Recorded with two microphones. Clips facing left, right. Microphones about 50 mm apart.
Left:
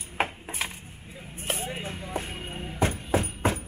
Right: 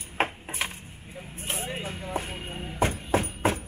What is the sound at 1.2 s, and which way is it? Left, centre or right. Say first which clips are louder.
Vehicle: left 2 dB; centre.